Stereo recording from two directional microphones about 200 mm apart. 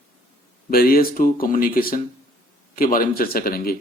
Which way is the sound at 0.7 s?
50° left (ahead or behind).